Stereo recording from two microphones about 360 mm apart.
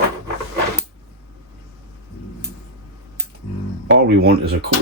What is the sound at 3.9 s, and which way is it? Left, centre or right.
Speech, right.